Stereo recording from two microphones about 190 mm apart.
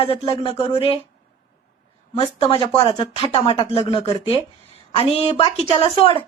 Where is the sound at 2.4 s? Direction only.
30° left (ahead or behind).